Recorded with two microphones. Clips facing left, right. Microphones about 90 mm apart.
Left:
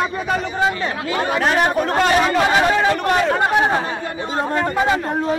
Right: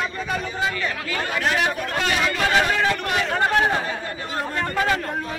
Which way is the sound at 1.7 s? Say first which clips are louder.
Left 7 dB; 35° left (ahead or behind).